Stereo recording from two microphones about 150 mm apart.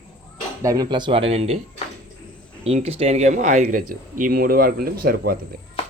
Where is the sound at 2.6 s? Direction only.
45° right (ahead or behind); by 5.4 s 90° right.